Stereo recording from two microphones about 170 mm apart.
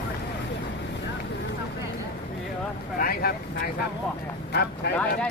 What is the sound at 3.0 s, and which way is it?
Vehicle, 60° left (ahead or behind).